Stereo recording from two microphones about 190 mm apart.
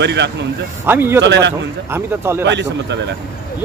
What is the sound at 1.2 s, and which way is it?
Speech, 65° right (ahead or behind).